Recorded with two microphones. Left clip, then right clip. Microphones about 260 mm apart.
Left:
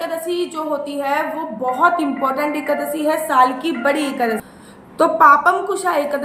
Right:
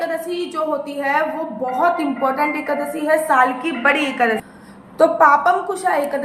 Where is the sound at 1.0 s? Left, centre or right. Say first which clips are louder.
Right 2 dB; centre.